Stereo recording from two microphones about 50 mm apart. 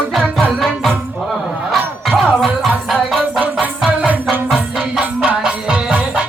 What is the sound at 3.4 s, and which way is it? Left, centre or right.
Music, right.